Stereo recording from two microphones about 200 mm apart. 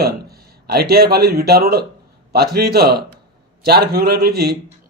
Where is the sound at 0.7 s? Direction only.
50° right (ahead or behind).